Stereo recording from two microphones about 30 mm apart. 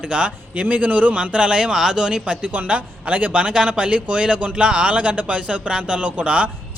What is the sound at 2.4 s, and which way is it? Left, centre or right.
Speech, right.